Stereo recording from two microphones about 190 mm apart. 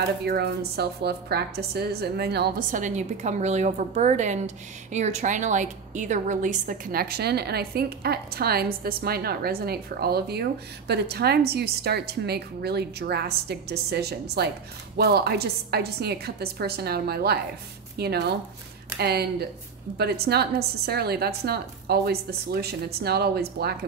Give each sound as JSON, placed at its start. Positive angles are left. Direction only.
{"t": 0.0, "sound": "a woman's voice", "side_deg": -55}
{"t": 2.8, "sound": "a woman's voice", "side_deg": -40}